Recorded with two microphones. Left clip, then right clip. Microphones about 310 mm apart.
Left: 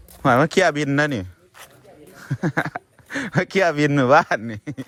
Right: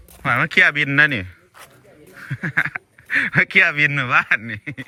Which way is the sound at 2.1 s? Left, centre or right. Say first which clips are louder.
Right 3 dB; centre.